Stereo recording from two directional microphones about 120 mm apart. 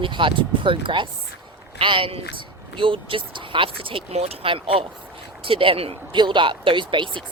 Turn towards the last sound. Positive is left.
turn(degrees=-40)  # may be behind; listen again after turning